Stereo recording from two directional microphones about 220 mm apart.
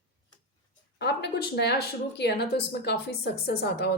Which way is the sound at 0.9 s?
50° left (ahead or behind).